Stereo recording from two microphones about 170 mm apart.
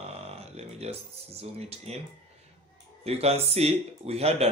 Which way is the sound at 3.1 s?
35° right (ahead or behind).